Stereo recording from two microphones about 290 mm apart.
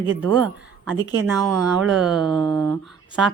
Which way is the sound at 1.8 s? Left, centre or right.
Centre.